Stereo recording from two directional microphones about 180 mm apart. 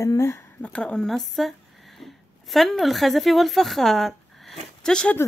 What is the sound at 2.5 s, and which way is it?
Speech, centre (ahead or behind).